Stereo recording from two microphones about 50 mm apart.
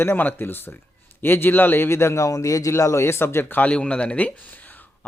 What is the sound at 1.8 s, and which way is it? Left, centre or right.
Speech, left.